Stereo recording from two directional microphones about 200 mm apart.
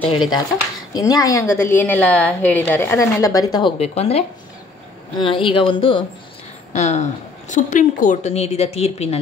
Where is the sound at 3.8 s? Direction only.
30° left (ahead or behind).